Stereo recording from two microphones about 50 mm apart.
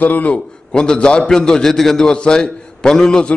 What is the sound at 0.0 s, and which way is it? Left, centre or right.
A man's voice, left.